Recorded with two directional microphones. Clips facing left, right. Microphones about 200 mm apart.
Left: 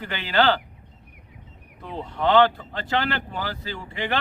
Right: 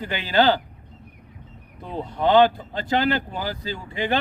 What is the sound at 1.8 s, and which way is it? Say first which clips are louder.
Speech: right 2 dB; 15° right (ahead or behind).